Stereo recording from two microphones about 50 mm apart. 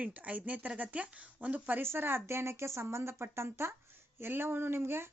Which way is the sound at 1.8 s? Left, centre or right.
Right.